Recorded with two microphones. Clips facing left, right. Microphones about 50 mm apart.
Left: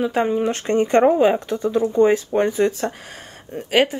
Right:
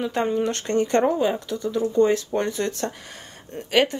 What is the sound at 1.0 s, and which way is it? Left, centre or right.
Speech, left.